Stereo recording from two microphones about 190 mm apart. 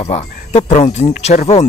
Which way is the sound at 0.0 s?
35° left (ahead or behind).